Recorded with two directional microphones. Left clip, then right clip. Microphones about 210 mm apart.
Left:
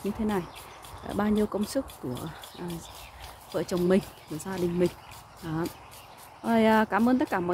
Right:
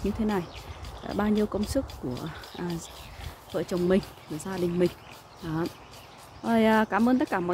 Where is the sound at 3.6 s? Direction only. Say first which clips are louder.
Even; centre (ahead or behind).